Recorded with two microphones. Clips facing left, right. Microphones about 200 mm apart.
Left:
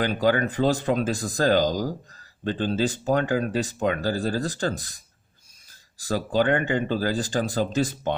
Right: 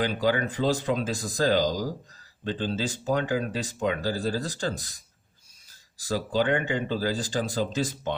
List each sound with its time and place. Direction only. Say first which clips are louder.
0.0 s speech: left 3 dB; 55° left (ahead or behind)
6.0 s speech: left 3 dB; 55° left (ahead or behind)